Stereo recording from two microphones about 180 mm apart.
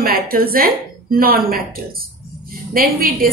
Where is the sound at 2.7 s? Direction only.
55° right (ahead or behind).